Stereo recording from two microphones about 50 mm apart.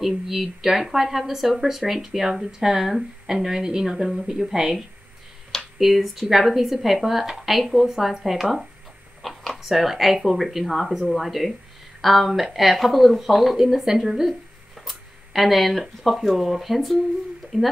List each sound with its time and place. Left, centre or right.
0.0 s speech: centre